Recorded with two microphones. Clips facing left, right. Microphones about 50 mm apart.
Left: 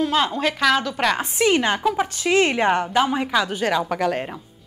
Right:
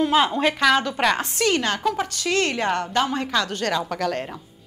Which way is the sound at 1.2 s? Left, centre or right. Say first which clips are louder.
Left 3 dB; centre.